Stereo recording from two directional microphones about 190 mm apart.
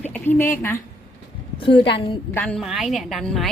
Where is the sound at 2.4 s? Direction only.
5° left (ahead or behind).